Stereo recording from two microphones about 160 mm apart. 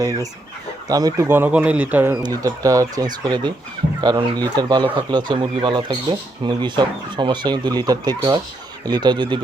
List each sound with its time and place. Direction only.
0.0 s speech: 20° right (ahead or behind)
2.2 s speech: 20° right (ahead or behind)